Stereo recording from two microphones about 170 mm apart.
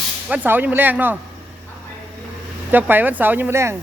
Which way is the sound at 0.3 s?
10° right (ahead or behind).